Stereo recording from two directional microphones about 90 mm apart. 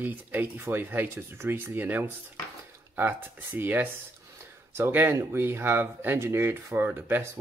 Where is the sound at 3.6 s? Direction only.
20° right (ahead or behind).